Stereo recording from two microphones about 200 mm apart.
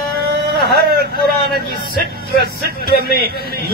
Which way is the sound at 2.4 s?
50° right (ahead or behind).